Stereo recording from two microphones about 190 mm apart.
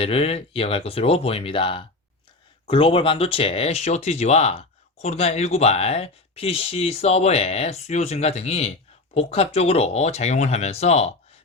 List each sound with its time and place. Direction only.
0.0 s speech: 30° left (ahead or behind)